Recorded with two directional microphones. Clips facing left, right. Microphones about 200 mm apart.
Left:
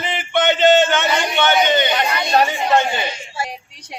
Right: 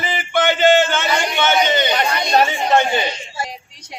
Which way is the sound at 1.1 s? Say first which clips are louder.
Even; 10° right (ahead or behind).